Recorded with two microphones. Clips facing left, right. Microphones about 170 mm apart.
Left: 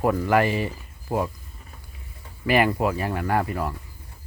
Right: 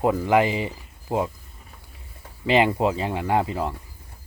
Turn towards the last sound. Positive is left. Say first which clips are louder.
# right 1 dB
turn(degrees=-20)  # may be behind; listen again after turning